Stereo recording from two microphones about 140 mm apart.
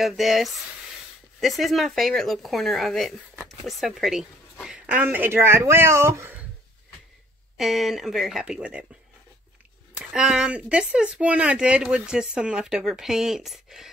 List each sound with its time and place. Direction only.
0.0 s speech: centre (ahead or behind); by 6.4 s 20° right (ahead or behind)
7.5 s speech: centre (ahead or behind)
9.9 s speech: 5° right (ahead or behind)